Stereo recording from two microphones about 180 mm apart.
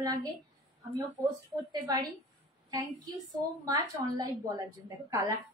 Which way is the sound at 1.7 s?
25° right (ahead or behind).